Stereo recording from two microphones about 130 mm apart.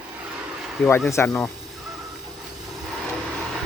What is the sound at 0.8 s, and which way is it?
Speech, 15° left (ahead or behind).